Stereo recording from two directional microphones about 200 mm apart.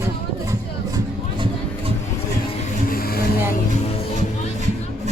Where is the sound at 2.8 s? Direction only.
45° left (ahead or behind).